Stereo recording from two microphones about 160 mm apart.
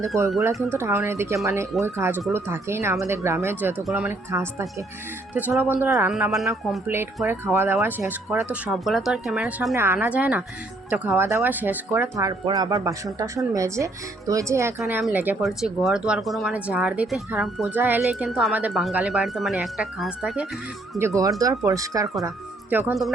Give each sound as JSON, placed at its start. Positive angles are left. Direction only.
{"t": 0.4, "sound": "speech", "side_deg": -15}
{"t": 15.4, "sound": "speech", "side_deg": 0}
{"t": 17.7, "sound": "speech", "side_deg": -10}
{"t": 21.2, "sound": "speech", "side_deg": -20}